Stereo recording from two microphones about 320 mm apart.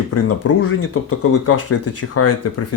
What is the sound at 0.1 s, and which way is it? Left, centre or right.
Speech, left.